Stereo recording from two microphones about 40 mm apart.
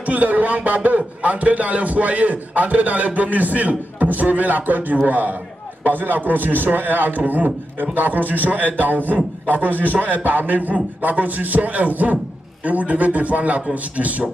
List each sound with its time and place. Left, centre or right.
0.0 s a man's voice: right